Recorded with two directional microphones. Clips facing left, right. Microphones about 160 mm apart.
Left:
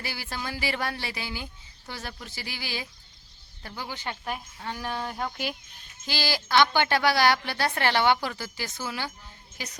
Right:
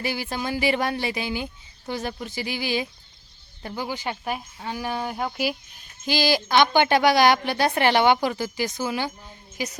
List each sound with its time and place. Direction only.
0.0 s speech: 15° right (ahead or behind)